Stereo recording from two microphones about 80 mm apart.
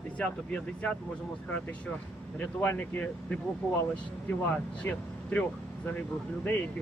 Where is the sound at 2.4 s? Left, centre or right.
Left.